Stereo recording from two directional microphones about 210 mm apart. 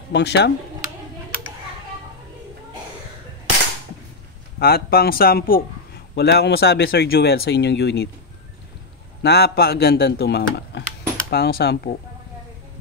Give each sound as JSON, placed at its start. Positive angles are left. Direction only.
{"t": 0.1, "sound": "speech", "side_deg": 55}
{"t": 4.6, "sound": "speech", "side_deg": 45}
{"t": 9.2, "sound": "speech", "side_deg": 50}